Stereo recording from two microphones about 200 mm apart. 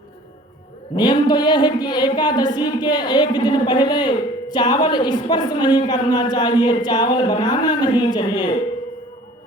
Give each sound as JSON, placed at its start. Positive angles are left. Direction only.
{"t": 0.9, "sound": "speech", "side_deg": 20}